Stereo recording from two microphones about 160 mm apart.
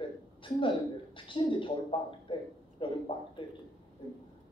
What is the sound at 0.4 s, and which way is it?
A woman's voice, 30° left (ahead or behind).